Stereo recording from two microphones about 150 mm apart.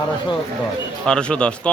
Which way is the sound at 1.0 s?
5° left (ahead or behind).